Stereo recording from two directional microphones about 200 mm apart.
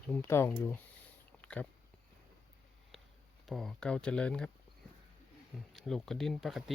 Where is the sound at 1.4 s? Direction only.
5° left (ahead or behind).